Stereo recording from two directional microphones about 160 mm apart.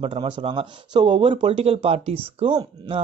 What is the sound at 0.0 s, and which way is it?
Speech, 35° right (ahead or behind).